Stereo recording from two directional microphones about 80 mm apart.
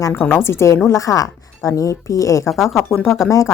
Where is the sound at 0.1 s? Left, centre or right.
Left.